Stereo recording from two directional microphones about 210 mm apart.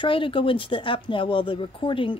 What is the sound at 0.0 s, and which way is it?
Speech, 25° left (ahead or behind).